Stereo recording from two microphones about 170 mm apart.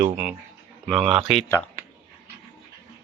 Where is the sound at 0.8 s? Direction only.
Centre (ahead or behind).